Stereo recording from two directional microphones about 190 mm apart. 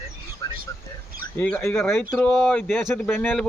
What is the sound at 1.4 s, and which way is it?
A man's voice, 10° left (ahead or behind).